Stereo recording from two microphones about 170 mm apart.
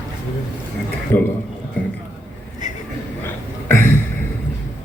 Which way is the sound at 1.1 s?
55° left (ahead or behind).